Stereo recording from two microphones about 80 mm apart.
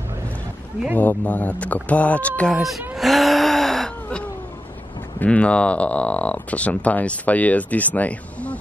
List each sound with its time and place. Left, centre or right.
0.9 s speech: centre
2.5 s speech: centre
3.0 s gasp: centre
5.2 s speech: centre